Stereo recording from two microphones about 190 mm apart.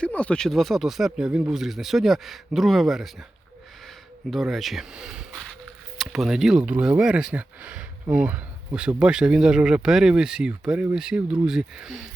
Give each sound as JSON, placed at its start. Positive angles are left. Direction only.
{"t": 0.0, "sound": "speech", "side_deg": 5}
{"t": 4.3, "sound": "speech", "side_deg": 0}